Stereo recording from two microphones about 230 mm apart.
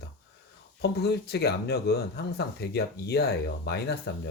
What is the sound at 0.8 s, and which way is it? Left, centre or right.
Speech, left.